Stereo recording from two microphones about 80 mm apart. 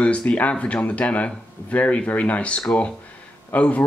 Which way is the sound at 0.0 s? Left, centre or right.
Centre.